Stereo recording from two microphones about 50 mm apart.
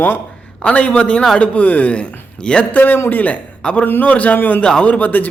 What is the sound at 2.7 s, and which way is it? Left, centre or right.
Speech, left.